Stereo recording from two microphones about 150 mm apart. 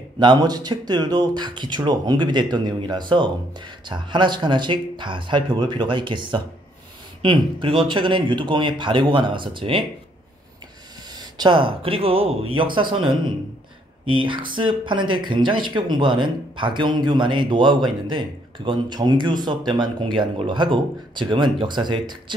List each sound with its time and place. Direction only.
0.2 s speech: 30° right (ahead or behind)
11.1 s speech: 30° right (ahead or behind)